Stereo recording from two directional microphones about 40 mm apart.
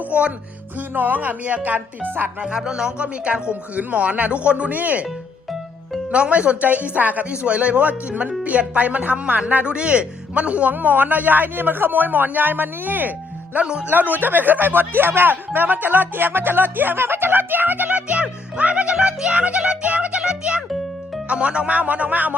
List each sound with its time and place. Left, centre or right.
0.0 s music: right
0.8 s a man's voice: right
2.4 s speech: centre
3.0 s speech: right
5.0 s music: centre
6.1 s a man's voice: right
13.6 s speech: right
13.8 s speech: right
18.6 s music: right
18.9 s music: right
21.2 s speech: right
21.7 s speech: right